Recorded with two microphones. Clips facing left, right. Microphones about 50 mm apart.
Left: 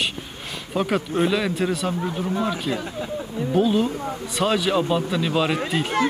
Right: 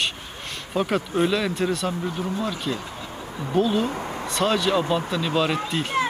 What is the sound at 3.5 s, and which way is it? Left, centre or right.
A man's voice, centre.